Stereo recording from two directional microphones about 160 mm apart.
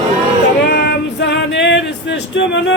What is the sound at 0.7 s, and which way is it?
Male singing, 90° left.